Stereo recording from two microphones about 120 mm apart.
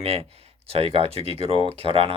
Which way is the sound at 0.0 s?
55° right (ahead or behind).